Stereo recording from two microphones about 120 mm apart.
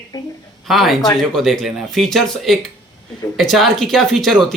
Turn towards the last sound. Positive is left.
turn(degrees=0)  # may be behind; listen again after turning